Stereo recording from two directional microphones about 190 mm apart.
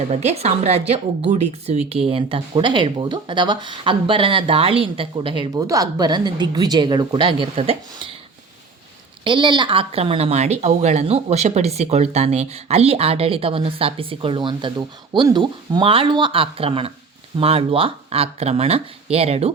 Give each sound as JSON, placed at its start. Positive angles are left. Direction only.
{"t": 0.1, "sound": "speech", "side_deg": -35}
{"t": 9.2, "sound": "speech", "side_deg": -25}